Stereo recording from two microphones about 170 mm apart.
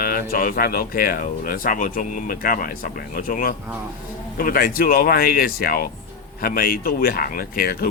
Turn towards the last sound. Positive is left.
turn(degrees=60)  # may be behind; listen again after turning